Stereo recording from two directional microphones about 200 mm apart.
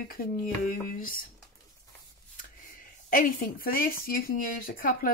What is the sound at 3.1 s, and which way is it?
Speech, 40° left (ahead or behind).